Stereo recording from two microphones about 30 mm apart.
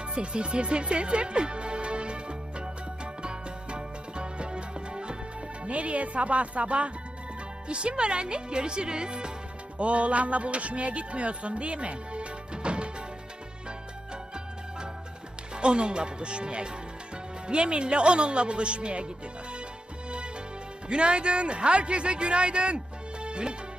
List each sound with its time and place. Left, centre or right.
0.0 s music: right
5.6 s speech: right
9.7 s music: right
15.5 s speech: right
20.1 s music: right
20.9 s speech: right
23.2 s music: right